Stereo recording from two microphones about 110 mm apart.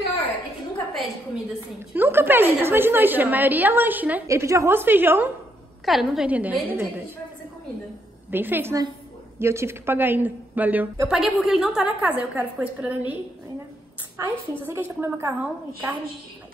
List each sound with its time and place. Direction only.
0.9 s a woman's voice: 5° right (ahead or behind)
2.0 s a woman's voice: 20° right (ahead or behind)
4.3 s a woman's voice: 30° right (ahead or behind)
5.9 s a woman's voice: 5° right (ahead or behind); by 7.1 s 20° right (ahead or behind)
8.3 s a woman's voice: 20° right (ahead or behind)
11.1 s a woman's voice: 5° right (ahead or behind)
14.2 s a woman's voice: 25° right (ahead or behind)